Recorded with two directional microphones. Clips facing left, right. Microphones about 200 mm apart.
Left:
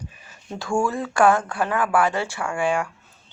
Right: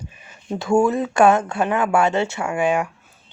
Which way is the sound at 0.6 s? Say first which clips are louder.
Right 6 dB; 20° right (ahead or behind).